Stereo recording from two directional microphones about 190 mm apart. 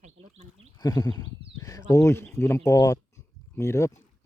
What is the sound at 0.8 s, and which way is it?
Speech, 20° left (ahead or behind).